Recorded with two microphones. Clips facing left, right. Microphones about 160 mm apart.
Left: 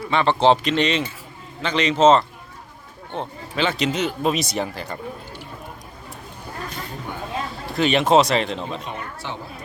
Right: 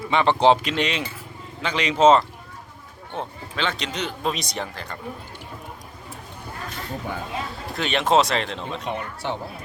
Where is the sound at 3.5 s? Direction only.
5° left (ahead or behind).